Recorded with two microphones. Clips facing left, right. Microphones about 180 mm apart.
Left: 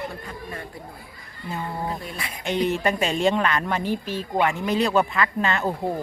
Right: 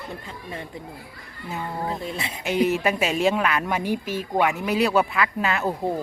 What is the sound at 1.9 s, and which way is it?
Speech, 25° right (ahead or behind).